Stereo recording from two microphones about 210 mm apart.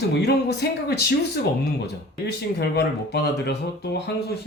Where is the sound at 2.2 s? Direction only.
50° left (ahead or behind).